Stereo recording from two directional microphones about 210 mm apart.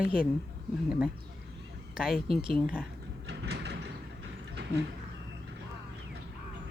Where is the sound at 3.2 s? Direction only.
55° right (ahead or behind).